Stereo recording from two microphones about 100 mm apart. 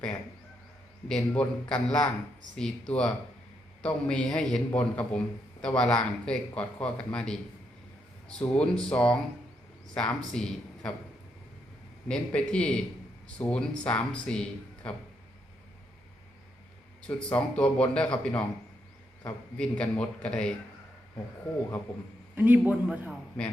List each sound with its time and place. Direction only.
1.0 s speech: 10° left (ahead or behind)
12.0 s speech: 10° left (ahead or behind)
17.3 s speech: 10° left (ahead or behind)
22.4 s a man's voice: 15° right (ahead or behind)